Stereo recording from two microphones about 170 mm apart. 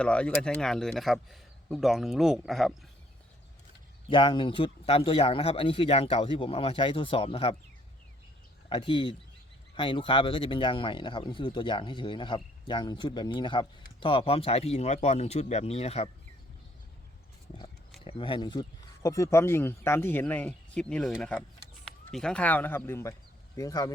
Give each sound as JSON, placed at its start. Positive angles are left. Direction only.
{"t": 0.0, "sound": "a man's voice", "side_deg": 5}
{"t": 4.1, "sound": "speech", "side_deg": 30}
{"t": 8.7, "sound": "speech", "side_deg": 30}
{"t": 18.0, "sound": "a man's voice", "side_deg": 30}